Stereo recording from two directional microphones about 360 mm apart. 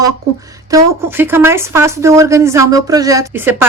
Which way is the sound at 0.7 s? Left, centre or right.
Centre.